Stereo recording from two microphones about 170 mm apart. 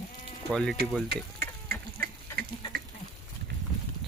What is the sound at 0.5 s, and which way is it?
Speech, 5° left (ahead or behind).